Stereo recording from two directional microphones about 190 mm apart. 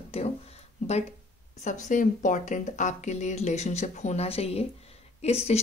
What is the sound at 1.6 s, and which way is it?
Speech, 40° left (ahead or behind).